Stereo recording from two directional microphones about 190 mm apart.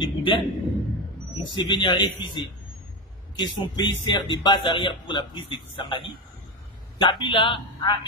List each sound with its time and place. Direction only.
0.0 s a man's voice: 25° left (ahead or behind)